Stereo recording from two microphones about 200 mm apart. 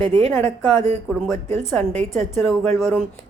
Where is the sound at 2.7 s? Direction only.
15° left (ahead or behind).